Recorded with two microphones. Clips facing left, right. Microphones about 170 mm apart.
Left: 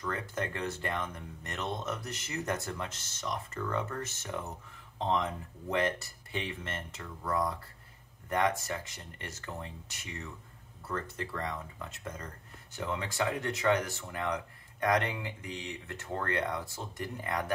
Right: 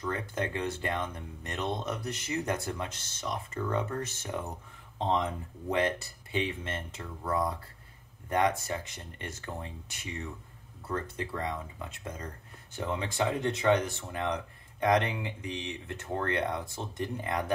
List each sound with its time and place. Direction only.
0.0 s speech: 15° right (ahead or behind)
3.2 s speech: 25° right (ahead or behind)
10.9 s speech: 15° right (ahead or behind)